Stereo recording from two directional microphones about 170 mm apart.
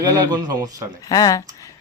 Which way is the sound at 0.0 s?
25° right (ahead or behind).